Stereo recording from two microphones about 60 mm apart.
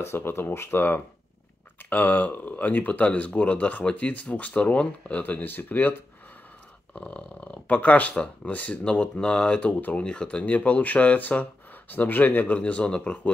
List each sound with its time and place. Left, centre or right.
0.0 s speech: left; by 5.2 s centre
5.2 s speech: left
7.0 s speech: left